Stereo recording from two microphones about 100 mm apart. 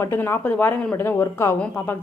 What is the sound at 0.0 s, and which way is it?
A woman's voice, 25° left (ahead or behind).